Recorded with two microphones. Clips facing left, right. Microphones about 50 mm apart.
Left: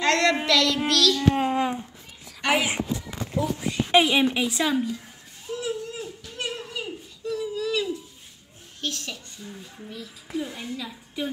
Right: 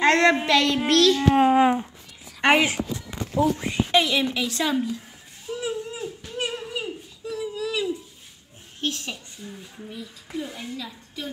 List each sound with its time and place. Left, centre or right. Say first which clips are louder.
0.0 s child singing: right 4 dB; right
0.5 s a child's voice: right 2 dB; right
3.3 s speech: right 4 dB; right
3.9 s a woman's voice: left 3 dB; left
4.6 s a woman's voice: even; centre
5.5 s a sound: right 1 dB; centre
8.8 s speech: right 3 dB; right
9.4 s a woman's voice: right 1 dB; centre
11.2 s a woman's voice: left 4 dB; centre